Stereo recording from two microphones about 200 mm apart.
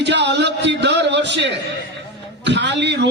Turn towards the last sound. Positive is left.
turn(degrees=-60)  # may be behind; listen again after turning